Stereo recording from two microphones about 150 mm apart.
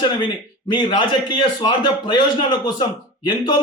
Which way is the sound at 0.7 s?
30° left (ahead or behind).